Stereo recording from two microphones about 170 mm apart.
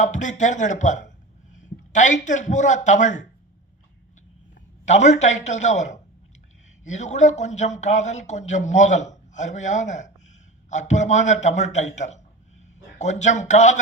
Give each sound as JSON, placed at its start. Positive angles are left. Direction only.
{"t": 0.0, "sound": "a man's voice", "side_deg": 45}
{"t": 4.9, "sound": "speech", "side_deg": 40}